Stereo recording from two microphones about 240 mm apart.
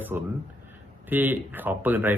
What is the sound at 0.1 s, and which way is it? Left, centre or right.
Speech, centre.